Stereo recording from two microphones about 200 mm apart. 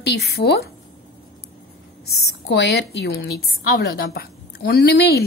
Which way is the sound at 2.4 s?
60° left (ahead or behind).